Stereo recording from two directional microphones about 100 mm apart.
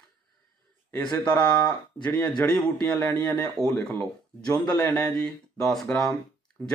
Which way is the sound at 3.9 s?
15° left (ahead or behind).